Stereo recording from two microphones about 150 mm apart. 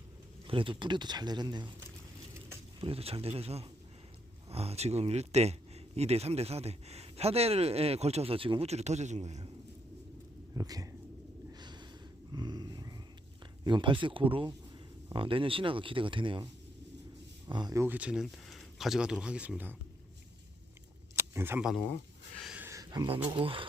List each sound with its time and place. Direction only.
0.4 s speech: 35° right (ahead or behind)
2.8 s speech: 40° right (ahead or behind)
10.5 s speech: 25° right (ahead or behind)
11.5 s snort: 30° right (ahead or behind)
12.3 s a sound: 30° right (ahead or behind)
13.7 s speech: 30° right (ahead or behind)
17.5 s speech: 25° right (ahead or behind)
17.8 s speech: 10° right (ahead or behind)
21.2 s camera: 15° right (ahead or behind)
22.4 s a sound: 5° right (ahead or behind)
22.6 s a sound: 20° right (ahead or behind)
23.0 s speech: 35° right (ahead or behind)